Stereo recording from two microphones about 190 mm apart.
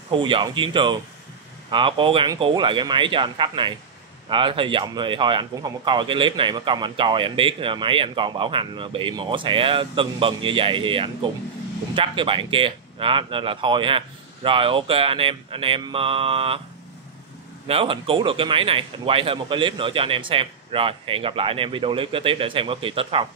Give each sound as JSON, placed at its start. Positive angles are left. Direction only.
{"t": 0.2, "sound": "speech", "side_deg": -25}
{"t": 17.6, "sound": "speech", "side_deg": -30}